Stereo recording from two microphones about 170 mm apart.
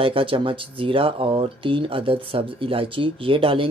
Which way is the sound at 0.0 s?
30° right (ahead or behind).